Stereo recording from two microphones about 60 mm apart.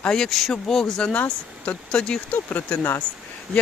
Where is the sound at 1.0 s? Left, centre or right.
Left.